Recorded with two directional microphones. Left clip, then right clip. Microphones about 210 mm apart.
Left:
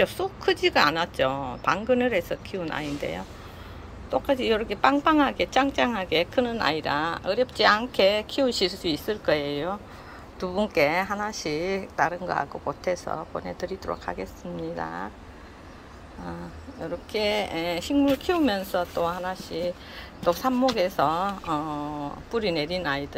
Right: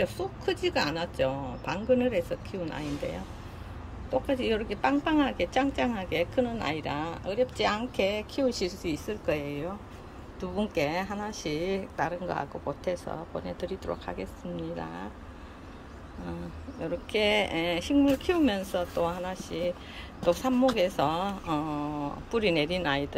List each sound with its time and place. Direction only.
0.0 s speech: centre (ahead or behind)
8.5 s speech: 25° right (ahead or behind)
9.1 s speech: 5° left (ahead or behind)
16.8 s speech: 5° right (ahead or behind)